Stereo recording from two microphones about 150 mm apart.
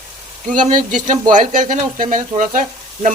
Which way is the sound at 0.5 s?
60° right (ahead or behind).